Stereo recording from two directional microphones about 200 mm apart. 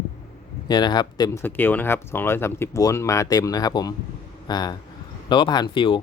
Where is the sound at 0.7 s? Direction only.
20° left (ahead or behind).